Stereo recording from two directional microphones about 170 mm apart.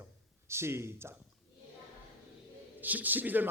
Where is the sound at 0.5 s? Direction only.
15° right (ahead or behind).